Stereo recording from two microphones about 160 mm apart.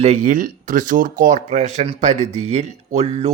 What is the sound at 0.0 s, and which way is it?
Speech, 50° right (ahead or behind).